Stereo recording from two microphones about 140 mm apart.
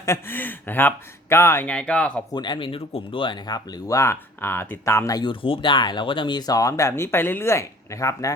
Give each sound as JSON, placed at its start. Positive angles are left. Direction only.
{"t": 0.0, "sound": "speech", "side_deg": 15}
{"t": 2.3, "sound": "speech", "side_deg": 30}